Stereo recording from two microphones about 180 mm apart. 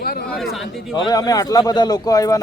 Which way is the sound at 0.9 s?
20° left (ahead or behind).